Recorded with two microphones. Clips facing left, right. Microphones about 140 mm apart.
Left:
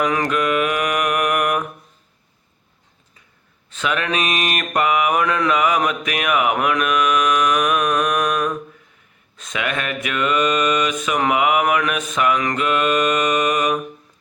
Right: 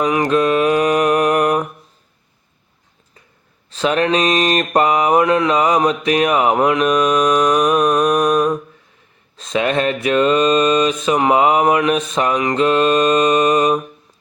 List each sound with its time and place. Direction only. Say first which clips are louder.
0.3 s mantra: right 5 dB; 30° right (ahead or behind)
3.7 s mantra: right 6 dB; 35° right (ahead or behind)